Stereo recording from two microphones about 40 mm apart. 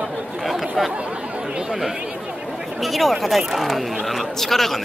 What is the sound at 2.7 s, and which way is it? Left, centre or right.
Speech, centre.